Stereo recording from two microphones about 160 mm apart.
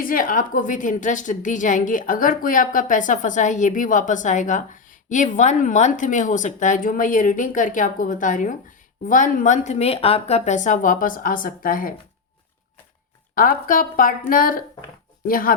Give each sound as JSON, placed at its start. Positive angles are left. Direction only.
{"t": 0.0, "sound": "a woman's voice", "side_deg": 60}
{"t": 13.3, "sound": "a woman's voice", "side_deg": 60}